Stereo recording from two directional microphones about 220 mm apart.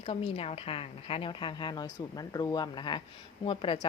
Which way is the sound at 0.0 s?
25° left (ahead or behind).